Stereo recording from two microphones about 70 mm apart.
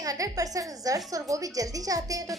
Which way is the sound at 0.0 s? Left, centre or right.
Right.